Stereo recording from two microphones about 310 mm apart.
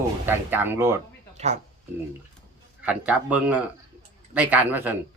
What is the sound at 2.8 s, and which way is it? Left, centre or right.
A man's voice, centre.